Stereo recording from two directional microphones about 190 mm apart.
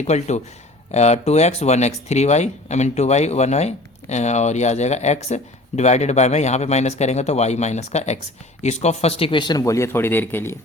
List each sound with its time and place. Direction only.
0.0 s speech: 35° left (ahead or behind); by 10.5 s 10° left (ahead or behind)